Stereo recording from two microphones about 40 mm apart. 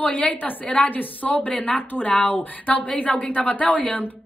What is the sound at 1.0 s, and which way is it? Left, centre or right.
Speech, left.